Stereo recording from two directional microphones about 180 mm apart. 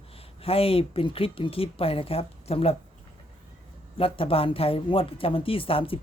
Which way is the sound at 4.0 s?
30° left (ahead or behind).